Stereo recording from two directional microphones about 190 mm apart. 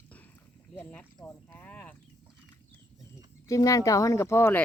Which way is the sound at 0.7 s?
10° left (ahead or behind).